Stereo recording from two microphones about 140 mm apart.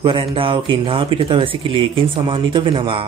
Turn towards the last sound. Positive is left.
turn(degrees=-40)  # may be behind; listen again after turning